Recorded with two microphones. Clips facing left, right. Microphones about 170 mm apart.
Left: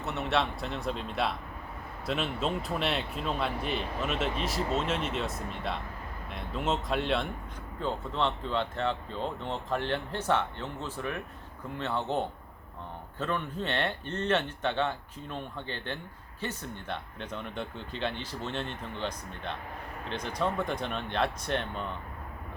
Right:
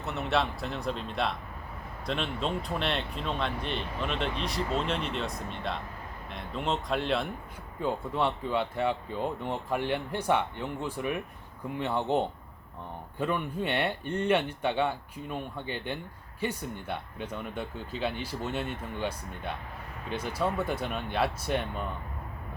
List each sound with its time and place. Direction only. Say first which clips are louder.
0.0 s speech: right 1 dB; centre (ahead or behind)
7.8 s speech: right 2 dB; 10° right (ahead or behind)